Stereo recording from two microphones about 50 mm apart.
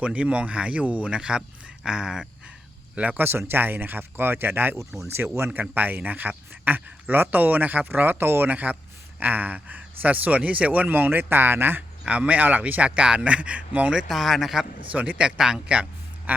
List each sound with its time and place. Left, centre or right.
0.0 s speech: right
2.9 s speech: right
3.2 s speech: right
5.5 s speech: right
8.4 s speech: right
12.0 s speech: right
14.1 s speech: centre
14.9 s speech: right
15.4 s a man's voice: centre